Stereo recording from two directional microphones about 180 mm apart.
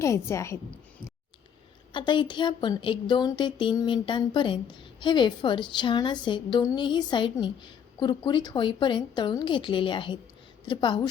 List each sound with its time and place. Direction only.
0.0 s a woman's voice: 15° left (ahead or behind)
1.9 s speech: 25° left (ahead or behind)